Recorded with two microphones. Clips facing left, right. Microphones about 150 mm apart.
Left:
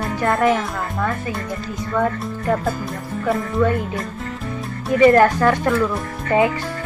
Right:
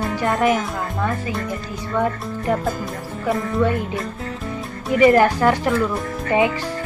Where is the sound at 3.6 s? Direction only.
20° right (ahead or behind).